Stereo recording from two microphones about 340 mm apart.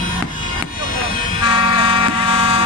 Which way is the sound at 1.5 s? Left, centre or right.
Centre.